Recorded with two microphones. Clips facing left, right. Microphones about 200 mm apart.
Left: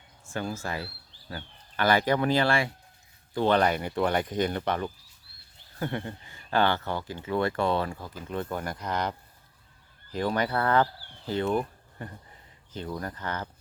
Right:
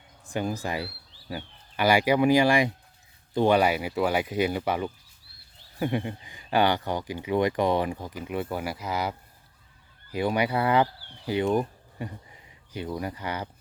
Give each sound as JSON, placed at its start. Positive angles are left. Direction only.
{"t": 0.3, "sound": "speech", "side_deg": -15}